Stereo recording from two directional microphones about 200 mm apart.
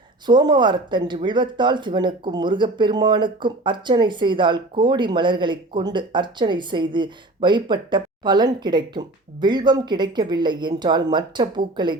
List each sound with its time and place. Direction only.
0.3 s speech: 20° right (ahead or behind)